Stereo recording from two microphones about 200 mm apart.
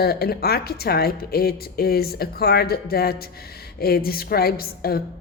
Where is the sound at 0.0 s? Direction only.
50° left (ahead or behind).